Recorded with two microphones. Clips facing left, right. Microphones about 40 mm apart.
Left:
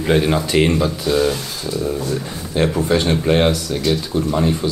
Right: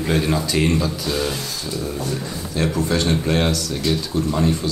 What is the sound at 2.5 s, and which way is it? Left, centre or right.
Speech, left.